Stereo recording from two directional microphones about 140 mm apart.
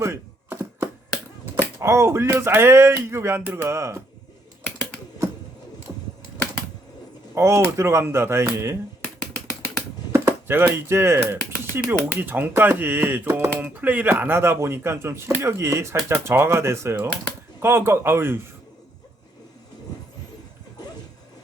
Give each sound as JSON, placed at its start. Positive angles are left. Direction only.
{"t": 0.0, "sound": "a sound", "side_deg": -15}
{"t": 1.8, "sound": "speech", "side_deg": -20}
{"t": 7.3, "sound": "speech", "side_deg": -20}
{"t": 10.1, "sound": "speech", "side_deg": -15}